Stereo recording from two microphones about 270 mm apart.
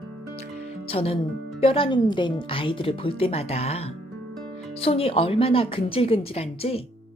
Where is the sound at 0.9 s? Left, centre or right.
Left.